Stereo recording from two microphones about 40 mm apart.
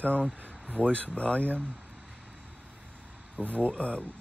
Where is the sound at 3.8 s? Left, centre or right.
Left.